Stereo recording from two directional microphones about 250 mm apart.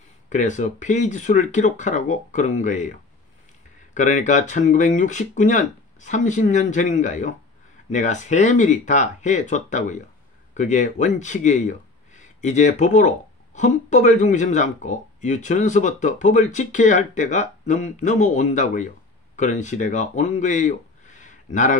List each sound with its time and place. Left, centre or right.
0.3 s speech: left
3.9 s speech: left